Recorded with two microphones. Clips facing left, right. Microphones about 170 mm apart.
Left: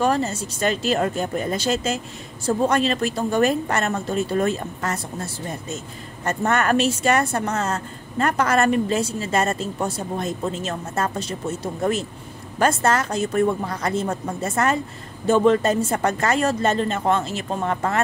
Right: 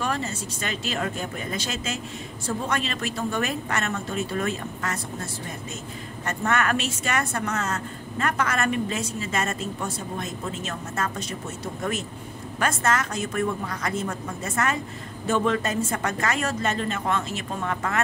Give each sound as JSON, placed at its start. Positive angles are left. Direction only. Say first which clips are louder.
{"t": 0.0, "sound": "a woman's voice", "louder": "left 7 dB", "side_deg": 35}
{"t": 6.2, "sound": "a woman's voice", "louder": "left 4 dB", "side_deg": 35}